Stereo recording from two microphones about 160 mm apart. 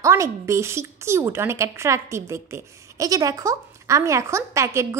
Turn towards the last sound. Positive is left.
turn(degrees=-15)  # may be behind; listen again after turning